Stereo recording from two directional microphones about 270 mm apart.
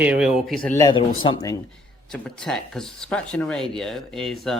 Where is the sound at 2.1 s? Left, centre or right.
Centre.